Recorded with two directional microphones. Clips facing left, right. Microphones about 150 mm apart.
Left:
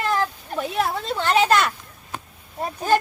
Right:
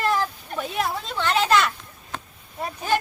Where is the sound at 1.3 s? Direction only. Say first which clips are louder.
Left 2 dB; 50° left (ahead or behind).